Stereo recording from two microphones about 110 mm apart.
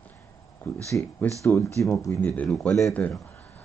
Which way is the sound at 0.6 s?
15° left (ahead or behind).